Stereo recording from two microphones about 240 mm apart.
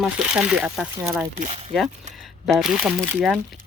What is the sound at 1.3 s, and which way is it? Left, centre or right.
Speech, right.